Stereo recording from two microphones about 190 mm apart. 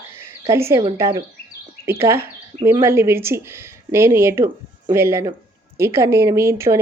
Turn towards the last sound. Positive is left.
turn(degrees=-15)  # may be behind; listen again after turning